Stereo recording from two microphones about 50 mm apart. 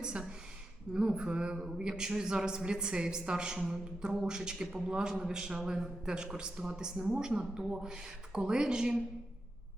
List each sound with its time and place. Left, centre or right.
0.0 s a woman's voice: centre
0.9 s a sound: centre
1.5 s a woman's voice: centre